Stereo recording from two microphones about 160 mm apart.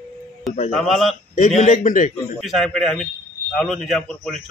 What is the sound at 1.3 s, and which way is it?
Speech, 50° left (ahead or behind).